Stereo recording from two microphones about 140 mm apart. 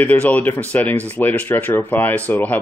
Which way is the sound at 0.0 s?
10° left (ahead or behind).